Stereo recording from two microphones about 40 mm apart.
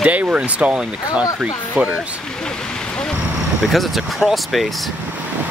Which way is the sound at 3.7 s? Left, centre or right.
Centre.